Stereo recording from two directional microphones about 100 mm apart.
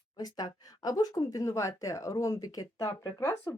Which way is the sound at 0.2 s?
40° left (ahead or behind).